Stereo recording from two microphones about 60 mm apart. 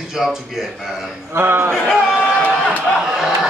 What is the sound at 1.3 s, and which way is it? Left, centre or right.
Speech, right.